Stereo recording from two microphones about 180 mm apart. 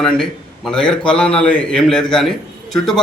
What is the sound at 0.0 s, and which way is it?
A man's voice, 5° left (ahead or behind).